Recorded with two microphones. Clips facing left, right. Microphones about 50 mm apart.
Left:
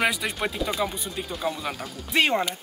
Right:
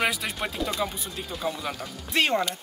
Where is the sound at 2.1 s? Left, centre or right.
Centre.